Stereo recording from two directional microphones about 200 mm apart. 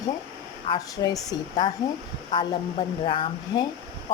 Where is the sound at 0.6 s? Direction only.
20° left (ahead or behind).